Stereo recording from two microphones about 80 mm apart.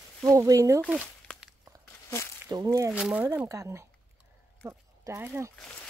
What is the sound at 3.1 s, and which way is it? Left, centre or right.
Speech, right.